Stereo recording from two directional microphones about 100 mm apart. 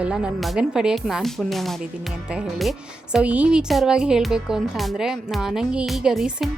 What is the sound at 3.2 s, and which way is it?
Speech, 15° right (ahead or behind).